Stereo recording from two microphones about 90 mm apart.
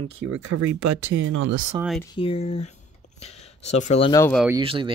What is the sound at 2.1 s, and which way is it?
Speech, 90° left.